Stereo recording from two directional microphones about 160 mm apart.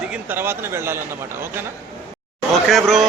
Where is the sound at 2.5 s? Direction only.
Centre (ahead or behind).